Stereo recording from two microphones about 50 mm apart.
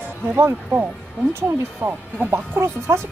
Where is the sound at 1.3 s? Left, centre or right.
Right.